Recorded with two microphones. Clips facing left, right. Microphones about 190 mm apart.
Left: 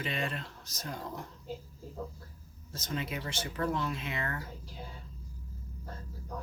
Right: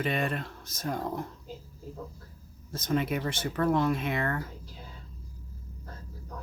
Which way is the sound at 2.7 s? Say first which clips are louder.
Right 8 dB; 55° right (ahead or behind).